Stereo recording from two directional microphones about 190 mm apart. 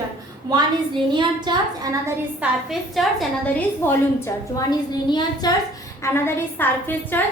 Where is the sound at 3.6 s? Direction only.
10° left (ahead or behind).